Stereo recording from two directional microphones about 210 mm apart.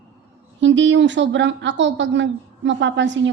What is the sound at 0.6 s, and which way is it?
A woman's voice, 60° right (ahead or behind).